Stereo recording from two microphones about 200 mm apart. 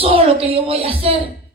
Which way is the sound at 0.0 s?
30° right (ahead or behind).